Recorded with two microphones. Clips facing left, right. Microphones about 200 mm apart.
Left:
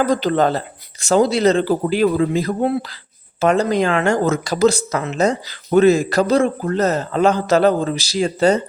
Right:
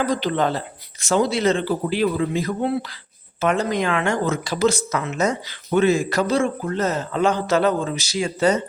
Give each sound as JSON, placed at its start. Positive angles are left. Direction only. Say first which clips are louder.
{"t": 0.0, "sound": "speech", "louder": "left 5 dB", "side_deg": 45}